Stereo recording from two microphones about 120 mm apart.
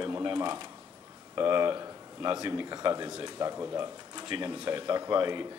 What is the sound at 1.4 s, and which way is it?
Speech, 25° right (ahead or behind).